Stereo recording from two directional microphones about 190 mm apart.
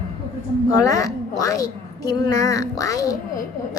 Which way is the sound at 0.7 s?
15° left (ahead or behind).